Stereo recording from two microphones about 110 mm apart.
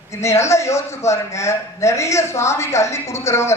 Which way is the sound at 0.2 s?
25° left (ahead or behind).